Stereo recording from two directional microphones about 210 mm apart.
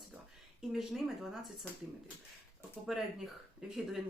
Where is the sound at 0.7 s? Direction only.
Centre (ahead or behind).